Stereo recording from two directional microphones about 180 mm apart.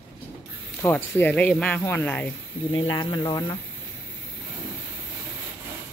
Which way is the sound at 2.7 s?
25° left (ahead or behind).